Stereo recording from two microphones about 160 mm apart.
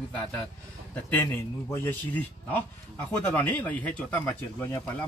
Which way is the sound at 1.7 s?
15° left (ahead or behind).